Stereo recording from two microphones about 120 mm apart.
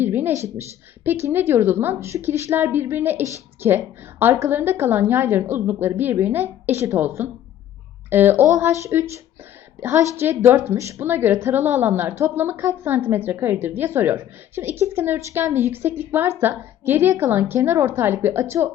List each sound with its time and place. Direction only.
0.0 s a woman's voice: 15° right (ahead or behind)